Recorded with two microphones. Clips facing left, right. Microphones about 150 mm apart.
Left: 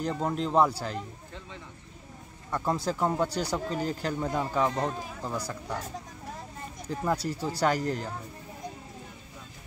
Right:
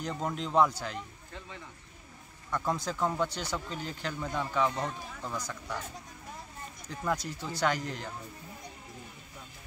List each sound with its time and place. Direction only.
0.0 s speech: 30° left (ahead or behind)
2.5 s speech: 30° left (ahead or behind)
6.9 s speech: 30° left (ahead or behind)